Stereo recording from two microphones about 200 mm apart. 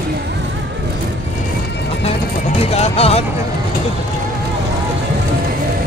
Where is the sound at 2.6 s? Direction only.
30° left (ahead or behind).